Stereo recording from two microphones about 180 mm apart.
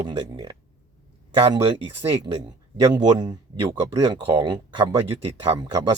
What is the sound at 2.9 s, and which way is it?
Speech, 20° right (ahead or behind).